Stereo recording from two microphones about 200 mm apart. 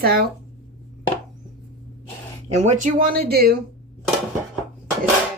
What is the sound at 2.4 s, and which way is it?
A woman's voice, 35° right (ahead or behind).